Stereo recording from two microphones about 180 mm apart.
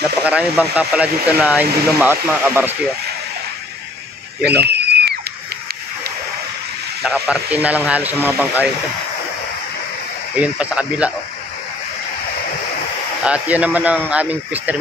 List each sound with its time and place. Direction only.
0.2 s speech: 5° right (ahead or behind)
4.5 s a sound: 65° right (ahead or behind)
7.0 s speech: 5° right (ahead or behind)
10.4 s speech: 5° right (ahead or behind)
13.2 s speech: 5° right (ahead or behind)